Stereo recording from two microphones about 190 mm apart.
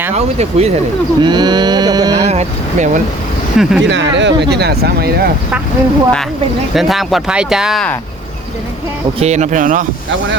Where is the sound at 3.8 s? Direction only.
65° right (ahead or behind).